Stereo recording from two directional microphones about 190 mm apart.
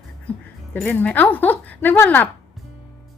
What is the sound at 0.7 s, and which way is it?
A woman's voice, 5° left (ahead or behind).